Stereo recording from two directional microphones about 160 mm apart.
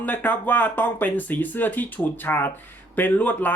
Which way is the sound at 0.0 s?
10° left (ahead or behind).